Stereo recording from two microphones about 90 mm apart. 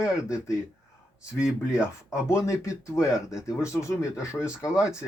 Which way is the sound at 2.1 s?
30° left (ahead or behind).